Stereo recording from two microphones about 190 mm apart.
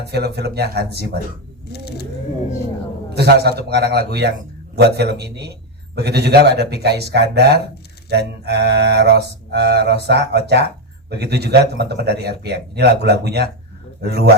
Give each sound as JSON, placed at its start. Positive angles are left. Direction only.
{"t": 0.0, "sound": "a man's voice", "side_deg": -60}
{"t": 1.7, "sound": "a sound", "side_deg": 60}
{"t": 3.2, "sound": "a man's voice", "side_deg": -60}